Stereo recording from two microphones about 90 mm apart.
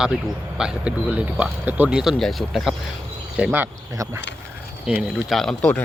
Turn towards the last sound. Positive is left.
turn(degrees=5)  # may be behind; listen again after turning